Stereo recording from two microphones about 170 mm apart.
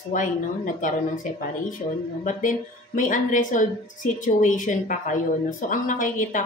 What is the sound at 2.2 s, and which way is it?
A woman's voice, 50° left (ahead or behind).